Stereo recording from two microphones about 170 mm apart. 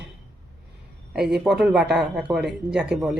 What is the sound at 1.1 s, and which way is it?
Speech, 5° right (ahead or behind).